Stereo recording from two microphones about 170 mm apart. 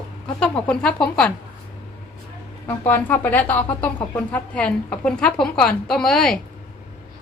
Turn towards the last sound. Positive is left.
turn(degrees=5)  # may be behind; listen again after turning